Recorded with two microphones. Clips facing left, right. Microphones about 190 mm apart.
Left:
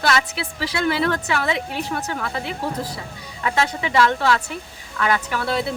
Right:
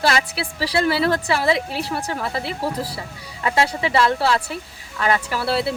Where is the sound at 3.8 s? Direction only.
35° right (ahead or behind).